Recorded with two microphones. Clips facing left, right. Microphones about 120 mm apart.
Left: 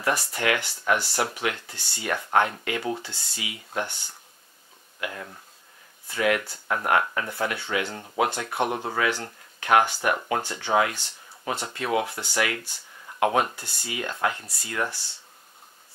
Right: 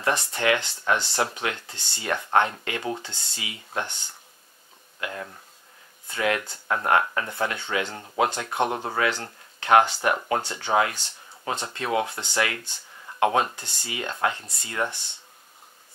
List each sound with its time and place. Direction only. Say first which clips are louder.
0.0 s speech: right 1 dB; 25° right (ahead or behind)
6.0 s speech: left 1 dB; 25° right (ahead or behind)